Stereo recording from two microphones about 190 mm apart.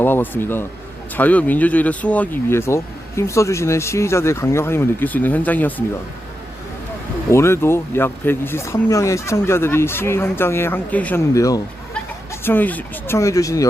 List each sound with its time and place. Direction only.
0.0 s a man's voice: 10° left (ahead or behind)
7.3 s speech: 15° left (ahead or behind)